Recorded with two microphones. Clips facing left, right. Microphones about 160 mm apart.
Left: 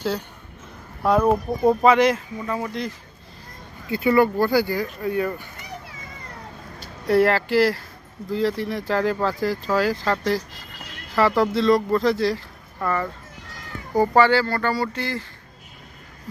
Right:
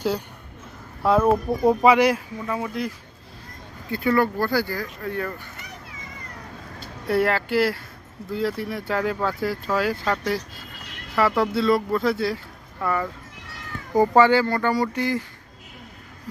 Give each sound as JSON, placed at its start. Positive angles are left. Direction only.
{"t": 0.0, "sound": "speech", "side_deg": -10}
{"t": 3.8, "sound": "speech", "side_deg": 5}
{"t": 7.1, "sound": "speech", "side_deg": 0}
{"t": 13.9, "sound": "speech", "side_deg": -15}